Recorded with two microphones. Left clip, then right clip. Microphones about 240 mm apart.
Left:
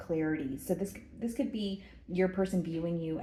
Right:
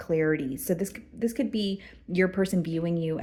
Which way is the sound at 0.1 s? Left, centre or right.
Right.